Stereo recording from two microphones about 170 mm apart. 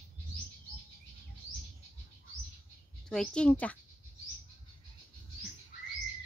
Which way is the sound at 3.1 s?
5° left (ahead or behind).